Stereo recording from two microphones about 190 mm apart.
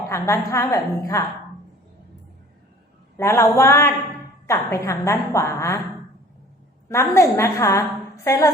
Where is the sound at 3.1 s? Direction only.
15° left (ahead or behind).